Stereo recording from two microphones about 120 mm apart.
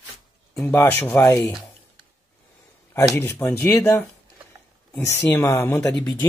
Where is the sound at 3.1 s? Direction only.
20° left (ahead or behind).